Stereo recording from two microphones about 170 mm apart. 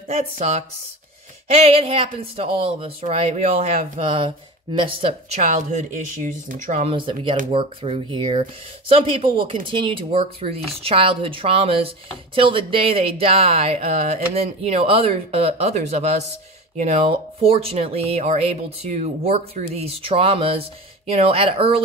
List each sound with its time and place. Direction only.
1.5 s speech: 35° right (ahead or behind)
5.4 s speech: 45° right (ahead or behind)
6.9 s speech: 30° right (ahead or behind)